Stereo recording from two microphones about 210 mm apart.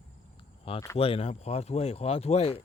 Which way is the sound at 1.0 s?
25° left (ahead or behind).